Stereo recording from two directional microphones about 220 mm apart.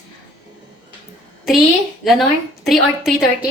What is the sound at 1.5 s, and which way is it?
A woman's voice, centre (ahead or behind).